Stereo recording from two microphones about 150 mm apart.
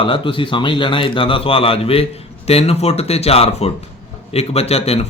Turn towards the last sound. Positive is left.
turn(degrees=45)  # may be behind; listen again after turning